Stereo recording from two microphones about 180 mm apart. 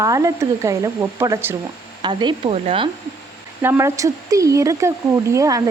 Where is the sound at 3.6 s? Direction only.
15° right (ahead or behind).